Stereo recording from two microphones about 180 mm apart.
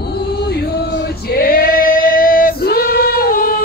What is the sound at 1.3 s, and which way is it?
Female singing, 55° left (ahead or behind).